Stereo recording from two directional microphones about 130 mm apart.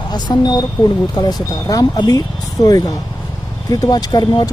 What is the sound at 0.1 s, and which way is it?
Speech, 30° left (ahead or behind).